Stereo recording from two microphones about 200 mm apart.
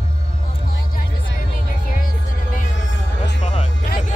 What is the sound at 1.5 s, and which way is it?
Music, 45° left (ahead or behind).